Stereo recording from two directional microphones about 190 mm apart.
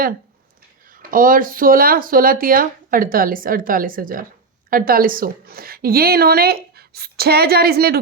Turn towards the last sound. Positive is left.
turn(degrees=-55)  # may be behind; listen again after turning